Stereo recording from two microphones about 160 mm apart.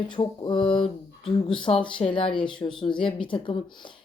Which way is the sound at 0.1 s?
30° left (ahead or behind).